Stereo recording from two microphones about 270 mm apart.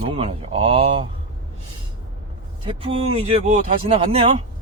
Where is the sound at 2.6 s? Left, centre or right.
Right.